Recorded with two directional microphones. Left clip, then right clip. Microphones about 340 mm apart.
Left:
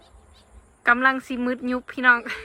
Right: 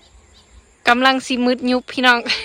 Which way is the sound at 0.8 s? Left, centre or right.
Centre.